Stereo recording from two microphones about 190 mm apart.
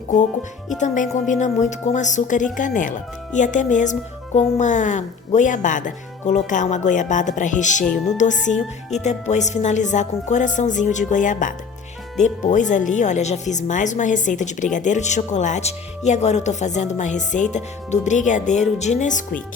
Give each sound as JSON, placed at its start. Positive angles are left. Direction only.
{"t": 1.3, "sound": "speech", "side_deg": 40}